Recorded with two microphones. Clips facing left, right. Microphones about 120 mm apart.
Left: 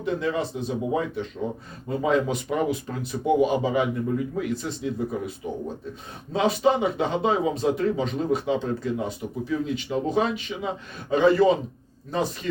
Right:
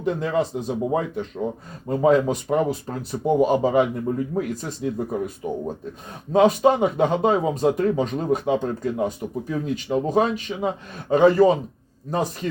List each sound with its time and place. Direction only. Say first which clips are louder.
0.0 s speech: right 3 dB; 45° right (ahead or behind)